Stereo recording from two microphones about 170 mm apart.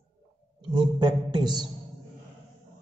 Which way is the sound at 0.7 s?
25° right (ahead or behind).